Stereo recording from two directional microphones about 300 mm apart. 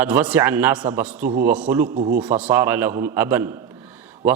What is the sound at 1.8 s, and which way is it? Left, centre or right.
Speech, right.